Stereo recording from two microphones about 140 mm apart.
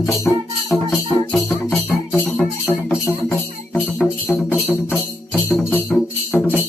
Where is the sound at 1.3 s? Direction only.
5° left (ahead or behind).